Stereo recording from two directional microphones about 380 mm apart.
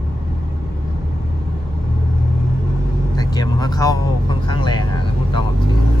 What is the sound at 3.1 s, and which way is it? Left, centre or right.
Speech, centre.